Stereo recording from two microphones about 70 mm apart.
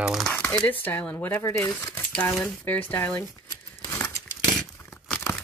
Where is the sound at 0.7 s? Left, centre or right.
Left.